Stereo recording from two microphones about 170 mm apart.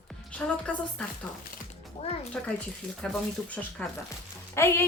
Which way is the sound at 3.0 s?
5° left (ahead or behind).